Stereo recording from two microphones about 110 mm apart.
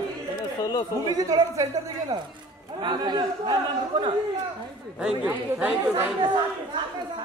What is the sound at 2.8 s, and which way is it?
Speech, 40° right (ahead or behind).